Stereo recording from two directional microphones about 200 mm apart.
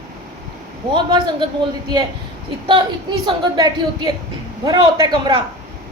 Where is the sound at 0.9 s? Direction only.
25° right (ahead or behind).